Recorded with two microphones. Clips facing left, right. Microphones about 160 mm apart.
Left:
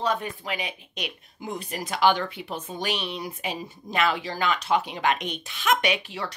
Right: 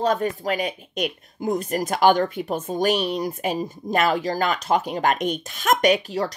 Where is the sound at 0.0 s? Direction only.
45° right (ahead or behind).